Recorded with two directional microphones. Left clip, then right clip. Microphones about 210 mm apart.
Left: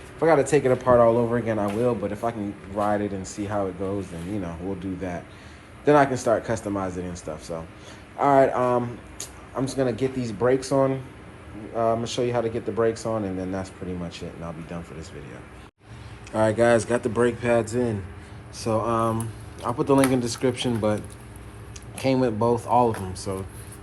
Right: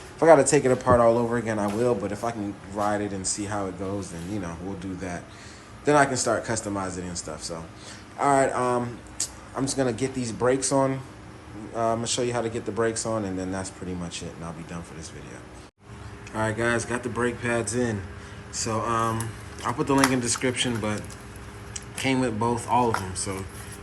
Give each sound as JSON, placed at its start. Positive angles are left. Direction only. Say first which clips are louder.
{"t": 0.2, "sound": "speech", "louder": "right 2 dB", "side_deg": -10}
{"t": 16.3, "sound": "speech", "louder": "left 6 dB", "side_deg": 0}
{"t": 22.0, "sound": "speech", "louder": "left 3 dB", "side_deg": 10}